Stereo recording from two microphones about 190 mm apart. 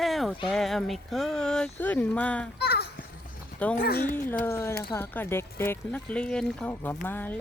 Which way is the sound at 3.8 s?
55° left (ahead or behind).